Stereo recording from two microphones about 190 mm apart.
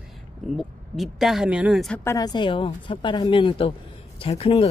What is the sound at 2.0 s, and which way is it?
A woman's voice, 15° left (ahead or behind).